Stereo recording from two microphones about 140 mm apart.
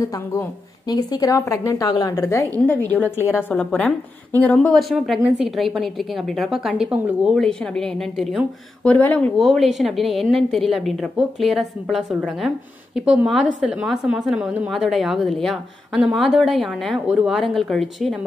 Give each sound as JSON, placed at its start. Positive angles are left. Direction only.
{"t": 0.0, "sound": "a woman's voice", "side_deg": 20}
{"t": 9.4, "sound": "a woman's voice", "side_deg": 0}